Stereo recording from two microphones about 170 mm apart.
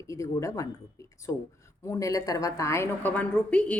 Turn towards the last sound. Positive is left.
turn(degrees=10)  # may be behind; listen again after turning